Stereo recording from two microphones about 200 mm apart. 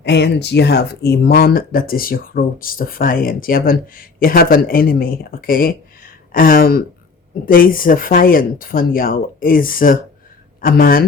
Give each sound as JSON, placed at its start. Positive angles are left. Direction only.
{"t": 0.0, "sound": "speech", "side_deg": 60}